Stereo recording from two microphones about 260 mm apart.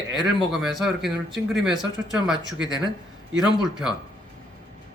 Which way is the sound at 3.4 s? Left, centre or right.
Centre.